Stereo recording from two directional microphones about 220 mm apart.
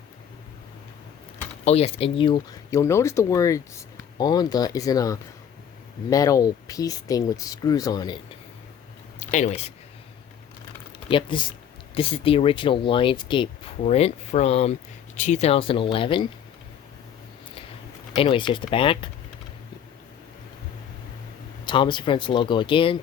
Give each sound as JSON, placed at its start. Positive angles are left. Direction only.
{"t": 1.6, "sound": "speech", "side_deg": 30}
{"t": 9.2, "sound": "speech", "side_deg": 30}
{"t": 11.1, "sound": "speech", "side_deg": 20}
{"t": 18.1, "sound": "speech", "side_deg": 25}
{"t": 21.7, "sound": "speech", "side_deg": 20}